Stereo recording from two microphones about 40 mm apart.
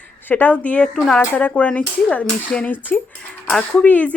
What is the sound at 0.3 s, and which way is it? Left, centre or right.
Speech, left.